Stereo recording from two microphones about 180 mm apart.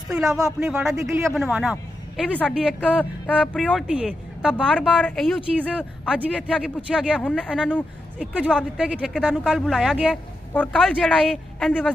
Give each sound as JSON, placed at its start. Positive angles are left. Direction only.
{"t": 0.1, "sound": "a woman's voice", "side_deg": -5}
{"t": 2.8, "sound": "a woman's voice", "side_deg": 10}
{"t": 8.7, "sound": "a woman's voice", "side_deg": -5}
{"t": 10.5, "sound": "a woman's voice", "side_deg": 10}